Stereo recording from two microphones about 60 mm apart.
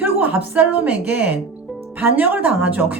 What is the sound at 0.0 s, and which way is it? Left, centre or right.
A woman's voice, right.